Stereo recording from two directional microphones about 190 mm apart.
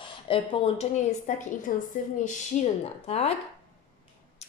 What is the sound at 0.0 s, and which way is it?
A woman's voice, 25° left (ahead or behind).